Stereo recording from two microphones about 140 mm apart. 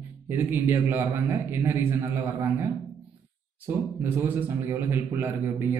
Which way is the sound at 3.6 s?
15° right (ahead or behind).